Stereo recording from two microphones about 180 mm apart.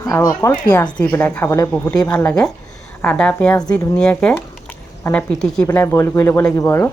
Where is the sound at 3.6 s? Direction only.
20° left (ahead or behind).